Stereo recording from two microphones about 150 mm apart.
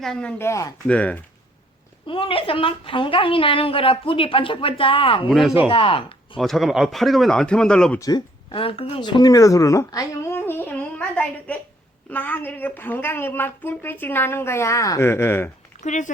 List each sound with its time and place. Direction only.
0.0 s a woman's voice: 5° left (ahead or behind)
2.0 s a woman's voice: 35° left (ahead or behind)
5.3 s speech: centre (ahead or behind)
5.6 s a woman's voice: 40° left (ahead or behind)
6.3 s speech: centre (ahead or behind)
7.9 s speech: 25° left (ahead or behind)
8.5 s a woman's voice: 40° left (ahead or behind); by 15.4 s 15° left (ahead or behind)
15.8 s speech: 55° left (ahead or behind)